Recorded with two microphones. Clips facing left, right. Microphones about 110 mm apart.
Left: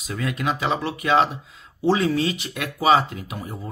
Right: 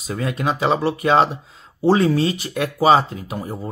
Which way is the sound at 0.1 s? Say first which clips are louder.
Right 3 dB; 30° right (ahead or behind).